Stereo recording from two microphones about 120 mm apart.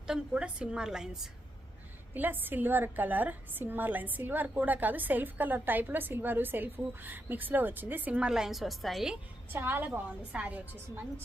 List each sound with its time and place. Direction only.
0.1 s a woman's voice: 10° right (ahead or behind)
2.1 s a woman's voice: 15° right (ahead or behind); by 9.1 s centre (ahead or behind)
9.5 s a woman's voice: 20° right (ahead or behind)